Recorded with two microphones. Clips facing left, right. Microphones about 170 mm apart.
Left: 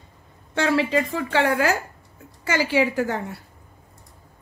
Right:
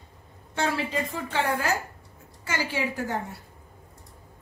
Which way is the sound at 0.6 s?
85° left.